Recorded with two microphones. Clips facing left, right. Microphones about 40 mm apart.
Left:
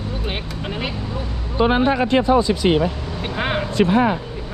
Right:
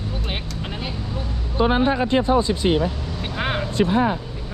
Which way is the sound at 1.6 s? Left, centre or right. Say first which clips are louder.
Left 2 dB; left.